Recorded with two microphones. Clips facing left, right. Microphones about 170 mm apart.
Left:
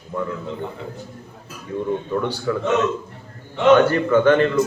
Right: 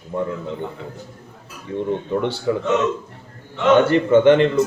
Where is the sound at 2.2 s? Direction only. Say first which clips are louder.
Right 3 dB; 25° right (ahead or behind).